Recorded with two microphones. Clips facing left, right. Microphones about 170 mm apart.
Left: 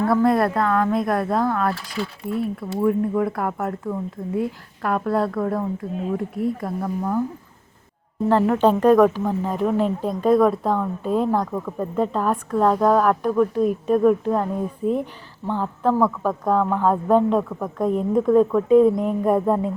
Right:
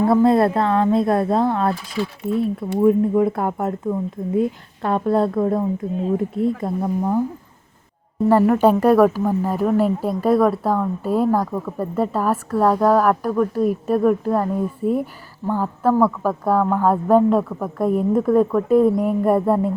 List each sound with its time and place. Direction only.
0.0 s speech: 25° right (ahead or behind)
8.3 s speech: 10° right (ahead or behind)